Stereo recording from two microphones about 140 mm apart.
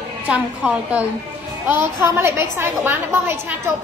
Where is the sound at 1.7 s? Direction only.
20° right (ahead or behind).